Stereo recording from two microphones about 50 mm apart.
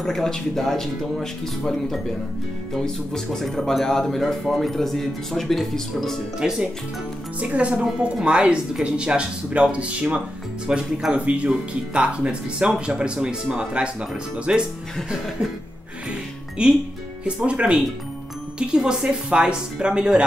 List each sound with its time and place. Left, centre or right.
0.0 s speech: centre
3.3 s speech: centre
6.4 s a woman's voice: centre
7.3 s speech: right
10.7 s a woman's voice: centre
11.1 s speech: right
16.6 s a woman's voice: centre